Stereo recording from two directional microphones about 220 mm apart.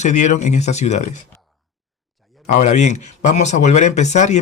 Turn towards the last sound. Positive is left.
turn(degrees=30)  # may be behind; listen again after turning